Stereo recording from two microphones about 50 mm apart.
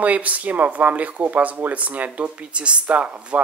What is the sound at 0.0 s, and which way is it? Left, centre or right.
Speech, right.